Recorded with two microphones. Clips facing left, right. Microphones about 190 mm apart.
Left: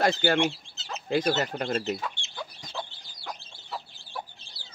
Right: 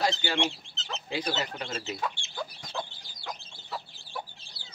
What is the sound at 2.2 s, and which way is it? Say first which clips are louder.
Chicken: left 2 dB; 20° left (ahead or behind).